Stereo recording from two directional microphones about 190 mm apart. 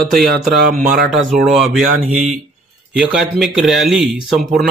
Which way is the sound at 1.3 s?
45° right (ahead or behind).